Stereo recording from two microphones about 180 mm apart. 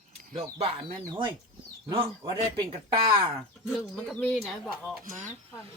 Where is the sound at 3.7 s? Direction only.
Centre (ahead or behind).